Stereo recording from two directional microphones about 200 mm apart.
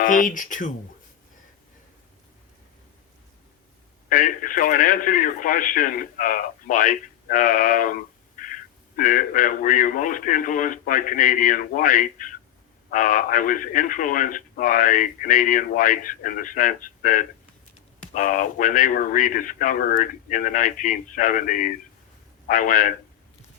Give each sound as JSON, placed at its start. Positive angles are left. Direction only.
{"t": 0.0, "sound": "speech", "side_deg": 40}
{"t": 4.1, "sound": "speech", "side_deg": 40}